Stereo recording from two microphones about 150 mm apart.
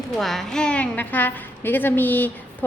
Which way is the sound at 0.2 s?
Centre (ahead or behind).